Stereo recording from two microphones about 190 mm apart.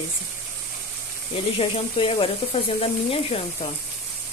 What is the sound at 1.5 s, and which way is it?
Speech, 30° left (ahead or behind).